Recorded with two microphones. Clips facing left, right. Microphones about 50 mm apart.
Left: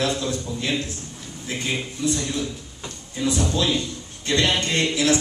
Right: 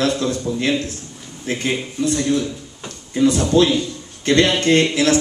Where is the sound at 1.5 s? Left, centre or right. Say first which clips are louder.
Right 5 dB; right.